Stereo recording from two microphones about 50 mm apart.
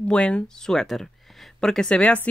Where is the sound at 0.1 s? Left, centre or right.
Centre.